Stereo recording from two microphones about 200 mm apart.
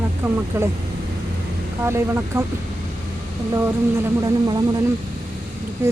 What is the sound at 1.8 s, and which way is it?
Speech, 15° right (ahead or behind).